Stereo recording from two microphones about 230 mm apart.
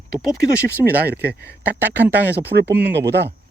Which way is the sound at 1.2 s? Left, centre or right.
Right.